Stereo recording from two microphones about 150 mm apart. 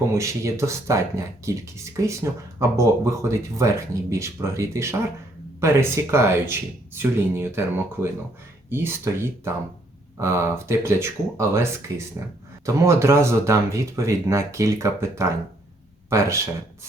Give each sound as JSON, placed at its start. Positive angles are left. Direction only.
{"t": 0.1, "sound": "speech", "side_deg": -20}
{"t": 8.7, "sound": "speech", "side_deg": -15}